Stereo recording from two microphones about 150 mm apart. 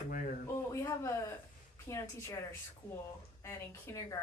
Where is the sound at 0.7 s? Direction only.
20° left (ahead or behind).